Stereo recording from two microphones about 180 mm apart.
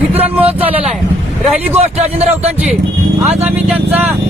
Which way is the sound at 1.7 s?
35° right (ahead or behind).